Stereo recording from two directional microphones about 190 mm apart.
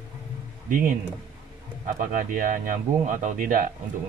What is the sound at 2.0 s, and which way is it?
Speech, 45° right (ahead or behind).